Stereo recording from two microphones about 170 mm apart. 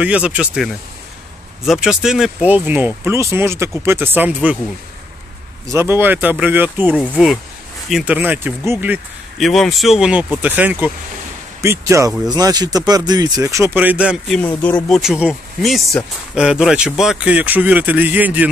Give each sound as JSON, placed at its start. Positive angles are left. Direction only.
{"t": 0.0, "sound": "speech", "side_deg": -5}
{"t": 1.7, "sound": "speech", "side_deg": -5}
{"t": 5.7, "sound": "speech", "side_deg": -15}
{"t": 7.0, "sound": "speech", "side_deg": 0}
{"t": 9.4, "sound": "speech", "side_deg": 0}
{"t": 14.4, "sound": "speech", "side_deg": 10}